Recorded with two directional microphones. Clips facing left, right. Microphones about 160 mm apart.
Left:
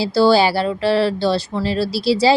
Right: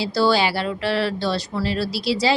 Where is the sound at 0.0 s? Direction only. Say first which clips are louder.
Left 5 dB; 30° left (ahead or behind).